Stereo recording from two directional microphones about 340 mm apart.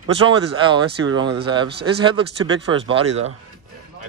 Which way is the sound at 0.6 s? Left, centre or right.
Centre.